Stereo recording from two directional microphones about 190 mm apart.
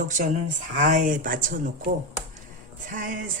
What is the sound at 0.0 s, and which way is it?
Speech, 40° right (ahead or behind).